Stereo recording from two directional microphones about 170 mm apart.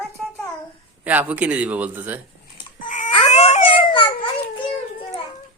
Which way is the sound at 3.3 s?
40° left (ahead or behind).